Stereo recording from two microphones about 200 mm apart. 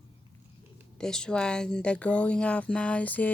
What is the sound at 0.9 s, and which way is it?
Speech, 5° left (ahead or behind).